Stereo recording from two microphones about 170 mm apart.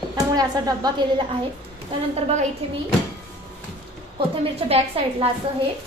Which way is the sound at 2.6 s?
35° right (ahead or behind).